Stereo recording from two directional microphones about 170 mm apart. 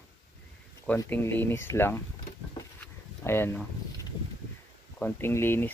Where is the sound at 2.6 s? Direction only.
15° left (ahead or behind).